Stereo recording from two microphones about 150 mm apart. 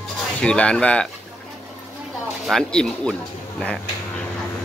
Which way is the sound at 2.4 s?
5° left (ahead or behind).